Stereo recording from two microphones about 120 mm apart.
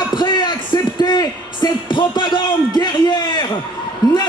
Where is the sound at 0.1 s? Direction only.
40° left (ahead or behind).